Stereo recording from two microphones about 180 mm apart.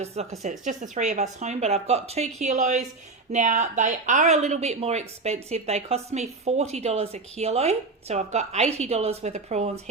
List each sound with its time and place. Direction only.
0.0 s a woman's voice: 35° right (ahead or behind)